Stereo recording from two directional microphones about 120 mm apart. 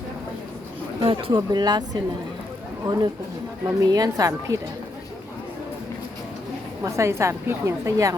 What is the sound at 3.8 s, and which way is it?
Speech, 30° right (ahead or behind).